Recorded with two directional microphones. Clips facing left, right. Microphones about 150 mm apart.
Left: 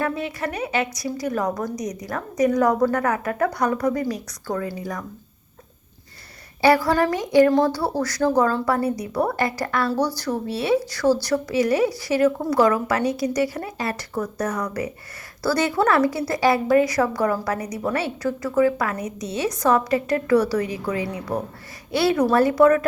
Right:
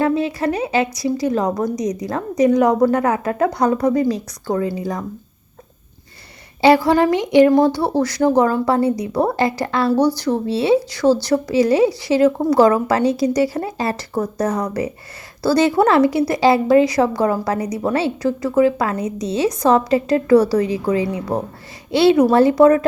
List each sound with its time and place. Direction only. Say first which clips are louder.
0.0 s a woman's voice: right 8 dB; 30° right (ahead or behind)
6.6 s a woman's voice: right 5 dB; 25° right (ahead or behind)